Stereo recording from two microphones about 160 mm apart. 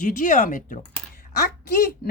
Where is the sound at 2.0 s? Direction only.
75° left (ahead or behind).